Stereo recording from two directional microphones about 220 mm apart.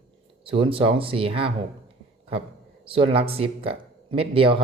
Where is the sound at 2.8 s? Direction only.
25° right (ahead or behind).